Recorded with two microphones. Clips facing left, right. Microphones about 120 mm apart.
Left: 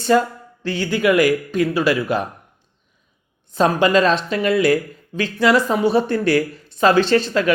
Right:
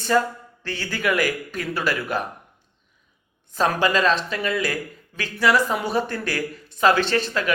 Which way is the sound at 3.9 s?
35° left (ahead or behind).